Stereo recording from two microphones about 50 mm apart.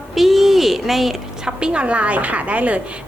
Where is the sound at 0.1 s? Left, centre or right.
Centre.